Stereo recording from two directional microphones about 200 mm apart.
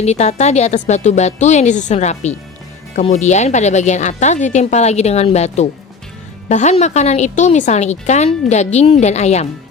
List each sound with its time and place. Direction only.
0.0 s a woman's voice: 35° left (ahead or behind)